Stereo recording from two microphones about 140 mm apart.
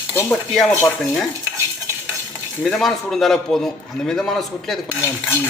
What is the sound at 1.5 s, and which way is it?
Stir, 20° right (ahead or behind).